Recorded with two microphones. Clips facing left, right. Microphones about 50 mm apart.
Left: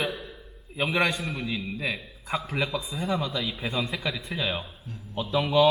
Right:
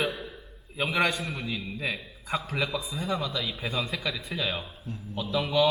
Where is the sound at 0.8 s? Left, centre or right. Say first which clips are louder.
Left 1 dB; centre.